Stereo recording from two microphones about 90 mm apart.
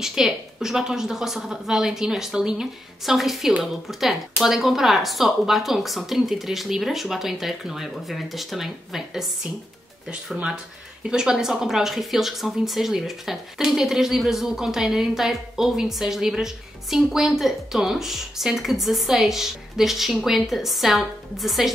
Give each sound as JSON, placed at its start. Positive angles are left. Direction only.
{"t": 0.0, "sound": "speech", "side_deg": -5}
{"t": 10.3, "sound": "speech", "side_deg": -5}